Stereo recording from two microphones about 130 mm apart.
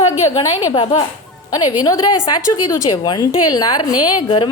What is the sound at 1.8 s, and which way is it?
A woman's voice, 30° left (ahead or behind).